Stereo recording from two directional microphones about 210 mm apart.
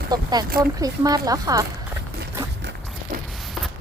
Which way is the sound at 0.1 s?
20° right (ahead or behind).